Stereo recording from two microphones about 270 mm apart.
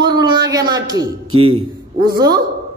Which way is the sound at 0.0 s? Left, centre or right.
Centre.